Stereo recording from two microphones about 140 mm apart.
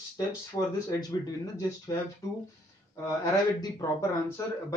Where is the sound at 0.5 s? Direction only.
20° left (ahead or behind).